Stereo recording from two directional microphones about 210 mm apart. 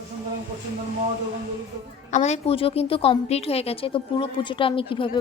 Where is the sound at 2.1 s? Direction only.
30° left (ahead or behind).